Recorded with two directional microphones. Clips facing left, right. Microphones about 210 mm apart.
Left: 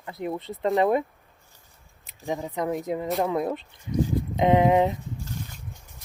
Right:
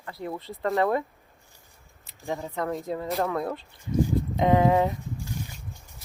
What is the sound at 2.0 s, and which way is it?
Speech, 15° left (ahead or behind).